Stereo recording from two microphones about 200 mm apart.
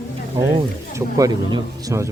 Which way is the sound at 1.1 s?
15° right (ahead or behind).